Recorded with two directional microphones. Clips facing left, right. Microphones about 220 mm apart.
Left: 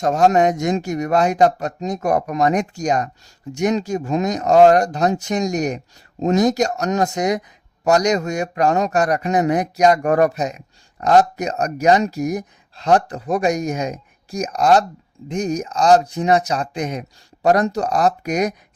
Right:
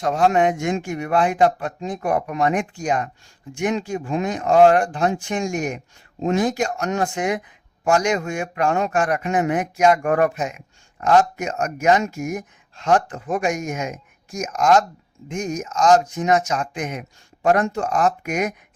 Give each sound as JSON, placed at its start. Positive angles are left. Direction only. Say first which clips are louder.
{"t": 0.0, "sound": "speech", "louder": "left 3 dB", "side_deg": 45}